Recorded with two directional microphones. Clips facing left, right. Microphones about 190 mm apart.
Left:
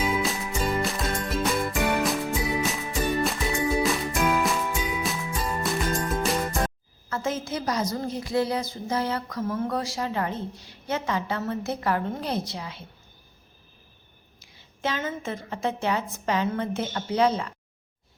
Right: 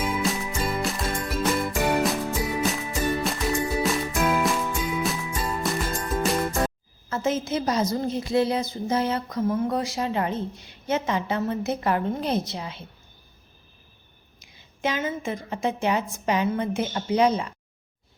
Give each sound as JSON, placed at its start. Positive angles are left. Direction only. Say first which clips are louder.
{"t": 0.0, "sound": "music", "louder": "even", "side_deg": 0}
{"t": 7.1, "sound": "a woman's voice", "louder": "right 4 dB", "side_deg": -20}
{"t": 14.3, "sound": "a woman's voice", "louder": "right 2 dB", "side_deg": -15}